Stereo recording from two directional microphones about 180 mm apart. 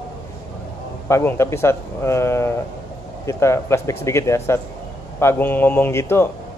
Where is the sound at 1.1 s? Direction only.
15° left (ahead or behind).